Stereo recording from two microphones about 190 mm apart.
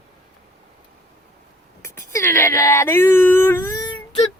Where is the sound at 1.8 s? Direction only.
15° left (ahead or behind).